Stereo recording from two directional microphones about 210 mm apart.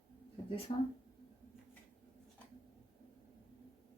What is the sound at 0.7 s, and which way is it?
Speech, 25° left (ahead or behind).